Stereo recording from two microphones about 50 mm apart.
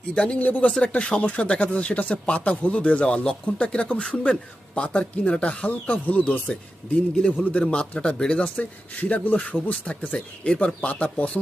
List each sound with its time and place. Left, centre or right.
0.1 s speech: left
7.6 s speech: centre
8.5 s speech: left